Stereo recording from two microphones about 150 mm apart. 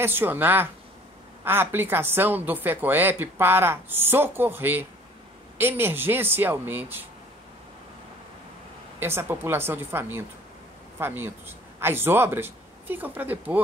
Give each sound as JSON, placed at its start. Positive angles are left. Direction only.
{"t": 0.0, "sound": "a woman's voice", "side_deg": -15}
{"t": 9.0, "sound": "a woman's voice", "side_deg": -15}